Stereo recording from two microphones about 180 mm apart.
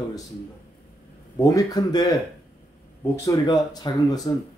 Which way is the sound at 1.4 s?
20° left (ahead or behind).